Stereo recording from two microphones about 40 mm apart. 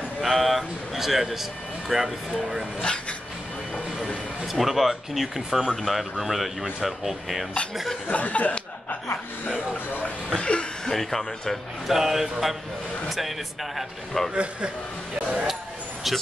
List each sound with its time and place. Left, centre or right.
0.2 s speech: centre
2.8 s speech: left
4.5 s speech: centre
8.1 s speech: left
10.3 s chuckle: left
10.9 s speech: centre
11.9 s speech: centre
13.7 s speech: centre
14.3 s a man's voice: right
16.0 s speech: centre